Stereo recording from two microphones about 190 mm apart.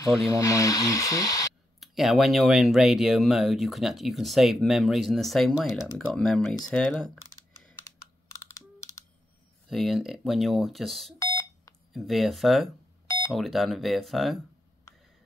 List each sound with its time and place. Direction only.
0.3 s speech: 15° left (ahead or behind)
1.8 s speech: centre (ahead or behind)
8.3 s computer keyboard: 15° left (ahead or behind)
9.7 s speech: centre (ahead or behind)
11.1 s alarm clock: 15° left (ahead or behind)
11.9 s speech: centre (ahead or behind)